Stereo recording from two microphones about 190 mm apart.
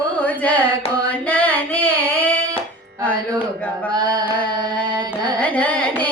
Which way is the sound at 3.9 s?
20° right (ahead or behind).